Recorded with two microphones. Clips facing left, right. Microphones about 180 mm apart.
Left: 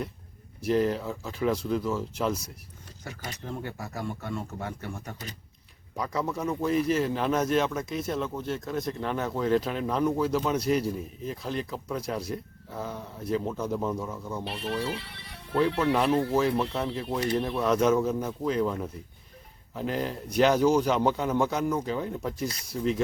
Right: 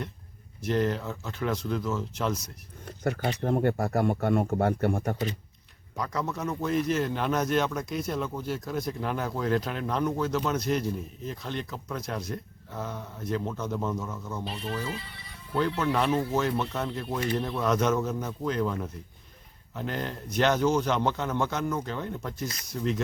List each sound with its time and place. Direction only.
0.6 s speech: 5° left (ahead or behind)
2.8 s a sound: 60° right (ahead or behind)
3.2 s speech: 55° right (ahead or behind)
6.0 s a man's voice: 5° left (ahead or behind)
14.4 s speech: 70° left (ahead or behind)
15.8 s a man's voice: 5° left (ahead or behind)